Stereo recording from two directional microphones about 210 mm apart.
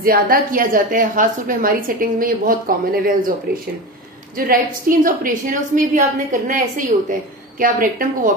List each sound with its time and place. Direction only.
0.0 s a woman's voice: 45° right (ahead or behind)
4.4 s a woman's voice: 40° right (ahead or behind)